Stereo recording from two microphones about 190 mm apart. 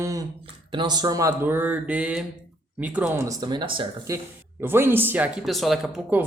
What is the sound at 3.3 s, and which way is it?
Speech, 25° right (ahead or behind).